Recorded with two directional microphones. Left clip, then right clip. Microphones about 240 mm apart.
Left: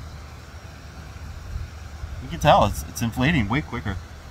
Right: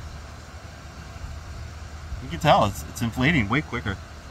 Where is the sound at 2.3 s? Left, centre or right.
Centre.